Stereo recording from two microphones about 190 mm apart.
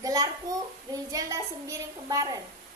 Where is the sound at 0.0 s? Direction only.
20° right (ahead or behind).